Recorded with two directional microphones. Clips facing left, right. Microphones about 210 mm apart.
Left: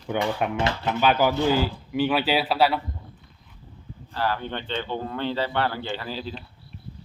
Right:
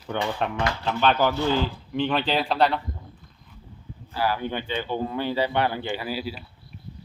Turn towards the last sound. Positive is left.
turn(degrees=-10)  # may be behind; listen again after turning